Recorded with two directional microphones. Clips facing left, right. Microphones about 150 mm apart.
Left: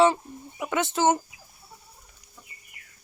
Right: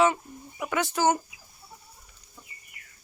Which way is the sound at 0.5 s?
20° left (ahead or behind).